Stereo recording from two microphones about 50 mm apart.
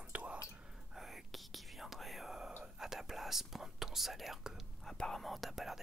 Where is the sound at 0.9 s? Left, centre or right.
Centre.